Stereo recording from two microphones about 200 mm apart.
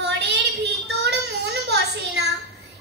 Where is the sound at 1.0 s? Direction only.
55° right (ahead or behind).